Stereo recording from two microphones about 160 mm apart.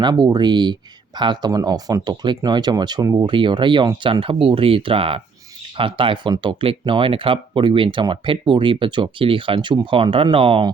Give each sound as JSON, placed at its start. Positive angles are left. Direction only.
{"t": 0.0, "sound": "speech", "side_deg": -25}